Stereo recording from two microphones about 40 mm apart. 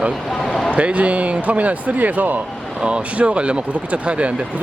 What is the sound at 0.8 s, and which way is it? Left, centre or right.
Speech, right.